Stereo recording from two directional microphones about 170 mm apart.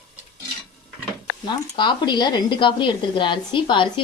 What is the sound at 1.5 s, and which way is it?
A woman's voice, 25° left (ahead or behind).